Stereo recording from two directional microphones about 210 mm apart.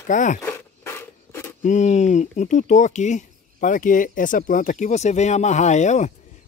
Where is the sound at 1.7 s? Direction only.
35° left (ahead or behind).